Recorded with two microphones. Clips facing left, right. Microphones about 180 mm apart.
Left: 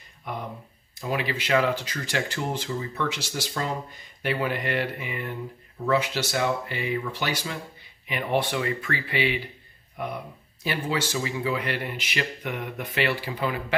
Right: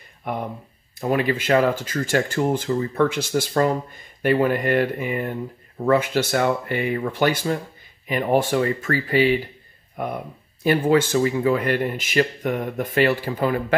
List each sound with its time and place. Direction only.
0.3 s speech: 55° right (ahead or behind)